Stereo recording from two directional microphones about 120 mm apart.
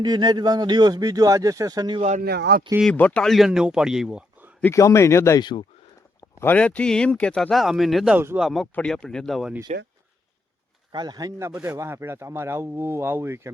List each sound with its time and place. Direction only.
0.0 s speech: 35° right (ahead or behind)
2.0 s speech: 70° right (ahead or behind)
2.8 s speech: 10° left (ahead or behind)
4.7 s a man's voice: 25° left (ahead or behind)
5.4 s speech: 40° left (ahead or behind)
6.4 s speech: 15° left (ahead or behind)
8.1 s speech: 20° right (ahead or behind)
8.4 s speech: centre (ahead or behind)
9.7 s speech: 75° right (ahead or behind)
10.9 s speech: 35° right (ahead or behind)